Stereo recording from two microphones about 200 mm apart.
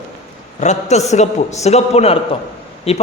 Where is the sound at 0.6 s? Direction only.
35° left (ahead or behind).